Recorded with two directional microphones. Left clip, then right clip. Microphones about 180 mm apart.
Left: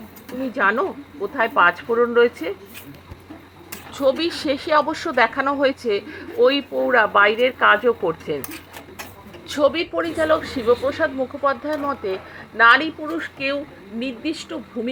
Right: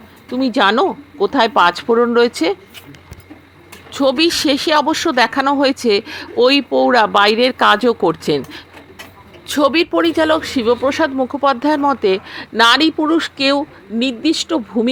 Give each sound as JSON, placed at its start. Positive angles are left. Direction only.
{"t": 0.5, "sound": "a man's voice", "side_deg": -30}
{"t": 3.9, "sound": "speech", "side_deg": -30}
{"t": 9.5, "sound": "a man's voice", "side_deg": -30}